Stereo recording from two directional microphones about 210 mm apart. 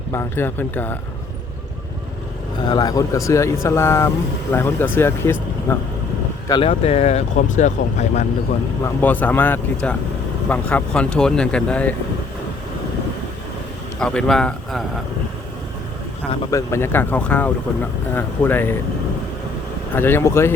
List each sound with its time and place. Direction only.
0.1 s speech: 10° left (ahead or behind)
2.6 s speech: 20° left (ahead or behind)
6.5 s speech: 25° left (ahead or behind)
8.8 s speech: 10° left (ahead or behind)
14.0 s speech: 5° left (ahead or behind)
16.3 s speech: 15° left (ahead or behind)
19.9 s speech: 10° left (ahead or behind)